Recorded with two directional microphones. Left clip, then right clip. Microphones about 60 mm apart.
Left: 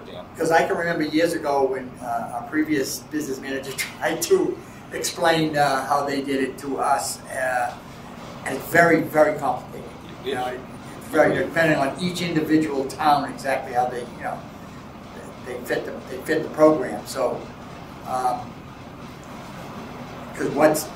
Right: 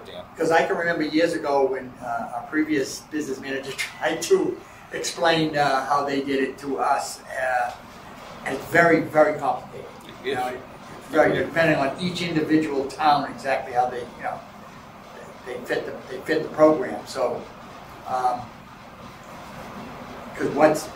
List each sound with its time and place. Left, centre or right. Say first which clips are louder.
0.4 s a man's voice: left 1 dB; left
11.1 s a man's voice: left 1 dB; left
15.4 s a man's voice: left 1 dB; left
20.3 s a man's voice: even; left